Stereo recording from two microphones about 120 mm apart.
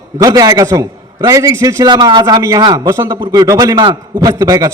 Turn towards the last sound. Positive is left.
turn(degrees=-25)  # may be behind; listen again after turning